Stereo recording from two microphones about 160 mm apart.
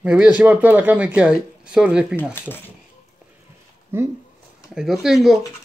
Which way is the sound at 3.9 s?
15° right (ahead or behind).